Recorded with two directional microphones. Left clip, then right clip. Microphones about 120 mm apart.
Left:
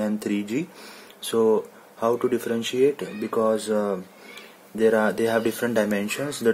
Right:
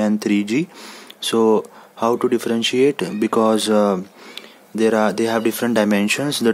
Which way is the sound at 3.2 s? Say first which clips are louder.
Right 7 dB; 55° right (ahead or behind).